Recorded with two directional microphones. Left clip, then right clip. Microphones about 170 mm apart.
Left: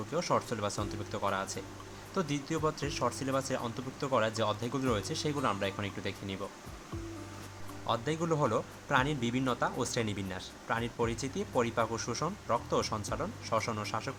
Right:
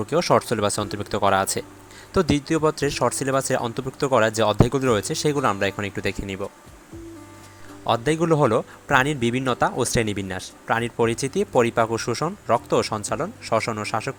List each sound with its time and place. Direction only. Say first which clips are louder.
0.1 s speech: right 12 dB; 40° right (ahead or behind)
7.9 s speech: right 12 dB; 40° right (ahead or behind)